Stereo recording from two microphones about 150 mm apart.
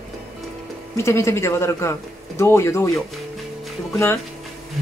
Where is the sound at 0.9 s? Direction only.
20° left (ahead or behind).